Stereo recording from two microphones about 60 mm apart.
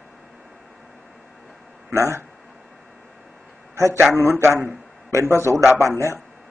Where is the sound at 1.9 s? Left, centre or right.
Right.